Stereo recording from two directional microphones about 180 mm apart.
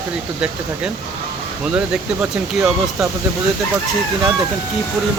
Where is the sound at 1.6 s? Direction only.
5° right (ahead or behind).